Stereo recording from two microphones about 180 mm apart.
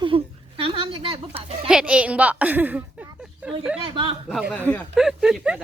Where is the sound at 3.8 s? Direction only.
25° right (ahead or behind).